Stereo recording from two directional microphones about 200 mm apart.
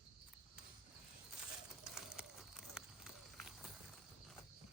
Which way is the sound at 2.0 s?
5° right (ahead or behind).